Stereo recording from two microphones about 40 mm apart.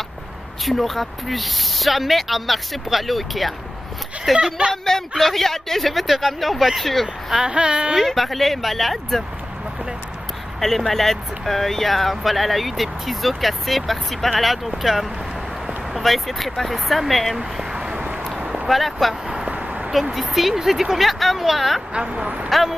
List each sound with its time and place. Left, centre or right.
0.7 s speech: centre
4.4 s speech: centre
5.1 s speech: centre
7.4 s speech: right
7.9 s speech: centre
10.9 s speech: centre
17.7 s a sound: right
18.7 s speech: centre
19.5 s a sound: right
19.9 s speech: centre
22.1 s speech: right
22.5 s speech: centre